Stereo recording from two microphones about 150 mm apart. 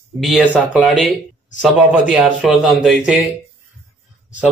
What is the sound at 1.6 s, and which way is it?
A man's voice, 5° right (ahead or behind).